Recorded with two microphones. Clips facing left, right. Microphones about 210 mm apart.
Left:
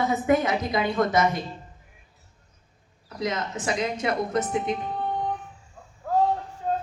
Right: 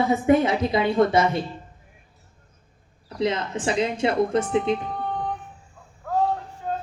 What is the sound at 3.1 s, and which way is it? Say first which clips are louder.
Speech: right 4 dB; 30° right (ahead or behind).